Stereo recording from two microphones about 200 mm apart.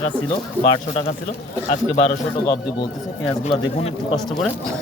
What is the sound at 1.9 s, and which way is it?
Speech, 35° left (ahead or behind).